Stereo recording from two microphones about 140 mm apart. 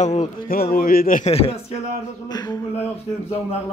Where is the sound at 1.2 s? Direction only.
45° left (ahead or behind).